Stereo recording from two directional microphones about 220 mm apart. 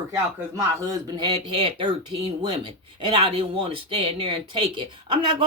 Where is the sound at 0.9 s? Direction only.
20° right (ahead or behind).